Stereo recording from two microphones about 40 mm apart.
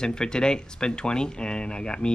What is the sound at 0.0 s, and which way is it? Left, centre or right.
Speech, centre.